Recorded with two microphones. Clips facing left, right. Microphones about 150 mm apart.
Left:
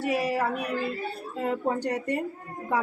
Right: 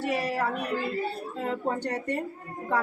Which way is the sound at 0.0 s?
10° left (ahead or behind).